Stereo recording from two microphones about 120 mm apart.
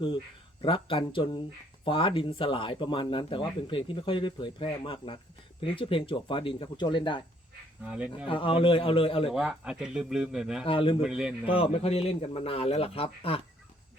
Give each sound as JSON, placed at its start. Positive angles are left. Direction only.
{"t": 0.6, "sound": "speech", "side_deg": 45}
{"t": 7.9, "sound": "speech", "side_deg": -10}
{"t": 8.3, "sound": "speech", "side_deg": 45}
{"t": 9.3, "sound": "speech", "side_deg": -5}
{"t": 10.6, "sound": "speech", "side_deg": 45}
{"t": 11.0, "sound": "speech", "side_deg": -5}
{"t": 11.4, "sound": "speech", "side_deg": 50}